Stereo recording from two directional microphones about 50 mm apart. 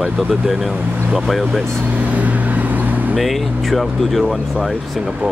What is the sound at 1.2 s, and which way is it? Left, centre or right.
Speech, centre.